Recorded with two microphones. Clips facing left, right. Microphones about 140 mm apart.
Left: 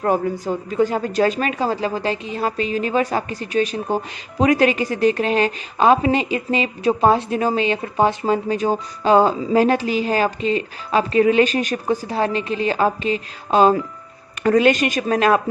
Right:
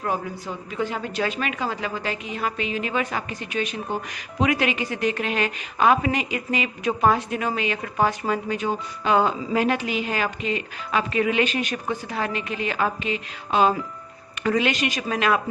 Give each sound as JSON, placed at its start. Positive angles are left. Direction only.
{"t": 0.0, "sound": "a man's voice", "side_deg": 45}